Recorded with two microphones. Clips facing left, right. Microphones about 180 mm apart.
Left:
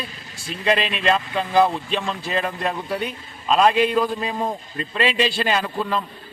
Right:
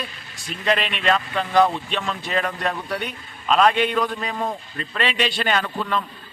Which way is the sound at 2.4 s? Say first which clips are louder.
Left 1 dB; 25° left (ahead or behind).